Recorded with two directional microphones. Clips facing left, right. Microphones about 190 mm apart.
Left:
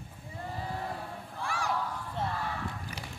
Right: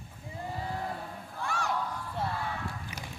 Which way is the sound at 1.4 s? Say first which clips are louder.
Right 1 dB; 10° left (ahead or behind).